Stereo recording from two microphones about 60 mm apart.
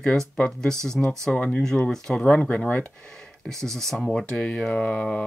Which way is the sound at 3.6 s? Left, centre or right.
Centre.